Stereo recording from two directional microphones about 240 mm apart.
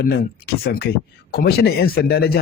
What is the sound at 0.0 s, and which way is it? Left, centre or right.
Speech, left.